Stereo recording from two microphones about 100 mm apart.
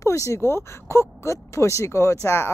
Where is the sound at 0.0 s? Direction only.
30° left (ahead or behind).